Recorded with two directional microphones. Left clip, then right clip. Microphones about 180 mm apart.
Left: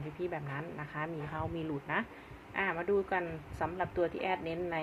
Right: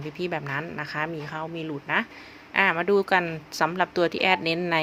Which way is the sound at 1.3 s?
25° right (ahead or behind).